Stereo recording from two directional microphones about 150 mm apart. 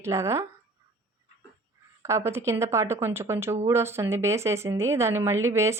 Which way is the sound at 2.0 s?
20° right (ahead or behind).